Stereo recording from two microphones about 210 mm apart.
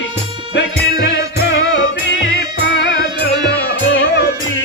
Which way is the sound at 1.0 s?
55° left (ahead or behind).